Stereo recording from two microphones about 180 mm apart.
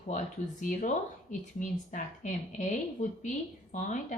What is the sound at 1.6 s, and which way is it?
Speech, 45° left (ahead or behind).